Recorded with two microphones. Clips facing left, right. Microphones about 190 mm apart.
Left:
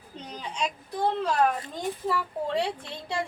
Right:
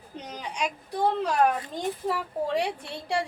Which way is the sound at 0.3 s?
15° right (ahead or behind).